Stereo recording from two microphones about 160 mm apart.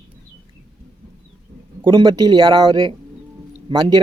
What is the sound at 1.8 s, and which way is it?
A man's voice, 30° right (ahead or behind).